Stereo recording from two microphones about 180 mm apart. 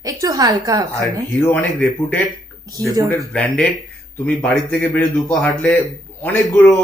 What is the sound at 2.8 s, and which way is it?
Speech, 20° right (ahead or behind).